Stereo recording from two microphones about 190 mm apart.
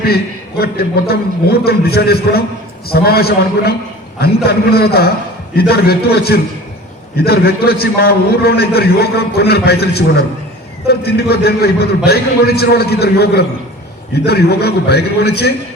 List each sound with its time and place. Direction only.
0.0 s a man's voice: 55° left (ahead or behind)